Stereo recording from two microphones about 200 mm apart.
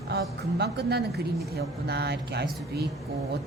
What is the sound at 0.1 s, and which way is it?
A woman's voice, 55° right (ahead or behind).